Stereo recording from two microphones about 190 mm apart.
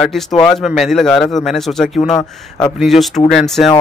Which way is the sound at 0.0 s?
Centre (ahead or behind).